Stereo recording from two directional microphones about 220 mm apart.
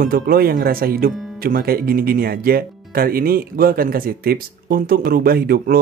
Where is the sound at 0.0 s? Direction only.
40° right (ahead or behind).